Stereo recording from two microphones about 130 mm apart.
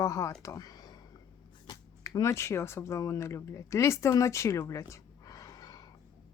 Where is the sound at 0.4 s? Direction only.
25° left (ahead or behind).